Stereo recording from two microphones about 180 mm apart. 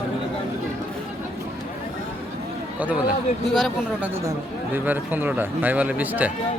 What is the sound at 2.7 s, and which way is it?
Speech, 10° right (ahead or behind).